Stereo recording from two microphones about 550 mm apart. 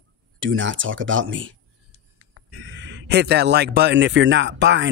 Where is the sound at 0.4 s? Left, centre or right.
Right.